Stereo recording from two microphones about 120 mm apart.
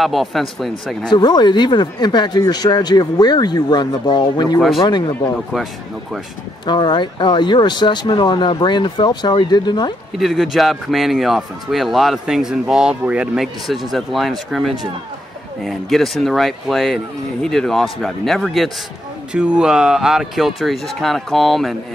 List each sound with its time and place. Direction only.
0.0 s a man's voice: centre (ahead or behind)
1.1 s speech: 35° left (ahead or behind)
6.6 s speech: 40° left (ahead or behind)
10.1 s a man's voice: centre (ahead or behind)